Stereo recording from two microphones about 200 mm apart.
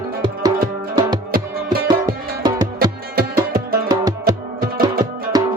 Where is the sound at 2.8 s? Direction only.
50° right (ahead or behind).